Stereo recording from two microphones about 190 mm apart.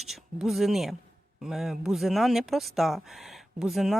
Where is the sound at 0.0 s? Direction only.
Centre (ahead or behind).